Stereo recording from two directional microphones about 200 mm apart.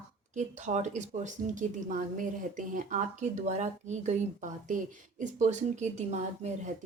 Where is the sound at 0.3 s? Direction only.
35° right (ahead or behind).